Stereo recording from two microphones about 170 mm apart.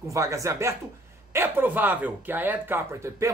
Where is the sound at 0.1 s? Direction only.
20° right (ahead or behind).